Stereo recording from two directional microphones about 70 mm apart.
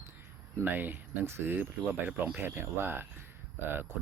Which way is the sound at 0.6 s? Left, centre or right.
Right.